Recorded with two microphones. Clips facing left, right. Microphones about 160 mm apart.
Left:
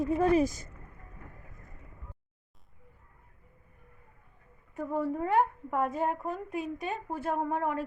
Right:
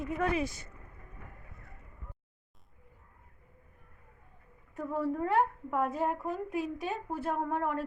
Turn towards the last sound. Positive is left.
turn(degrees=0)  # may be behind; listen again after turning